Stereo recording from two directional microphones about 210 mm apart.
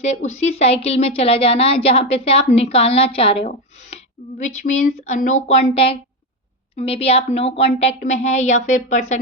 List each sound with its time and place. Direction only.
0.0 s a woman's voice: 35° left (ahead or behind)